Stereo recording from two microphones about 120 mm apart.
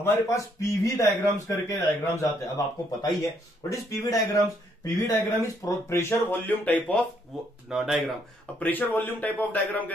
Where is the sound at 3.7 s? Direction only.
25° left (ahead or behind).